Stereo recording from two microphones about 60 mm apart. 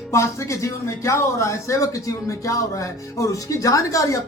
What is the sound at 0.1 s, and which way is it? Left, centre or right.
A man's voice, left.